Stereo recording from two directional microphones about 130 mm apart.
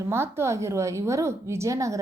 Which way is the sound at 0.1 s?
20° right (ahead or behind).